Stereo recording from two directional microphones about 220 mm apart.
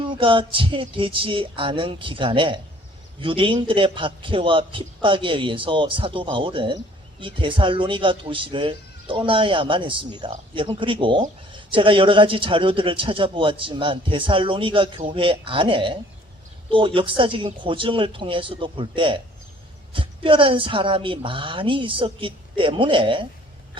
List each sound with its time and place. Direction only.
0.0 s a man's voice: 25° right (ahead or behind)